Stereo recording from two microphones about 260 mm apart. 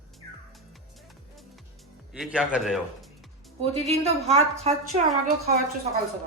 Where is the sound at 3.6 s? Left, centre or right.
Right.